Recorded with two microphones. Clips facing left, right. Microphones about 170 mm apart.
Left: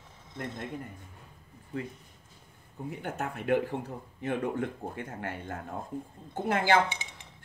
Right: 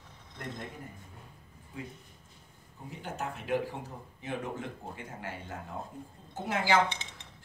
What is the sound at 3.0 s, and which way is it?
Speech, 55° left (ahead or behind).